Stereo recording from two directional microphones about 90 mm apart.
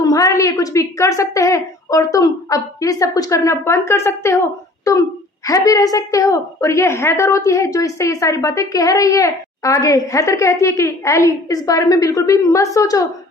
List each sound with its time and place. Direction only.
0.0 s a woman's voice: 40° left (ahead or behind)
5.5 s a woman's voice: 40° left (ahead or behind)